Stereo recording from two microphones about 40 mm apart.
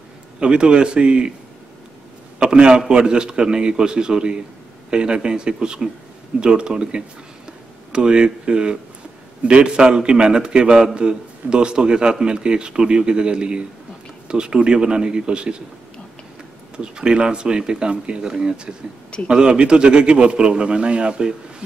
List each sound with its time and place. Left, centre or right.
0.4 s a man's voice: right
2.3 s a sound: right
2.9 s a man's voice: right
16.7 s a man's voice: right